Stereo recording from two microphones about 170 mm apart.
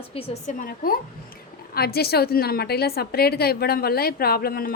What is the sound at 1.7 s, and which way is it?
A woman's voice, 65° left (ahead or behind).